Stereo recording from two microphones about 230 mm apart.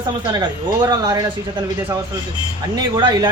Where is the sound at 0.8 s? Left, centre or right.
Centre.